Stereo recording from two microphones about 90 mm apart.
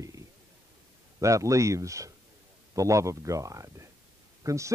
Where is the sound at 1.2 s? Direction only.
35° right (ahead or behind).